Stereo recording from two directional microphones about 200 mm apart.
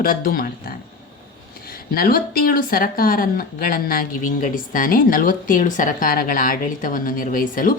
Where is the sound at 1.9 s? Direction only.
45° left (ahead or behind).